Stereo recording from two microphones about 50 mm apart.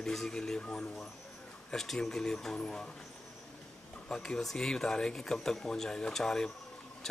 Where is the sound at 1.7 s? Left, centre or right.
Centre.